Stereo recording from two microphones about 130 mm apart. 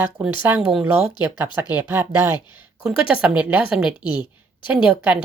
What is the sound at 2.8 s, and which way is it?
Speech, 10° right (ahead or behind).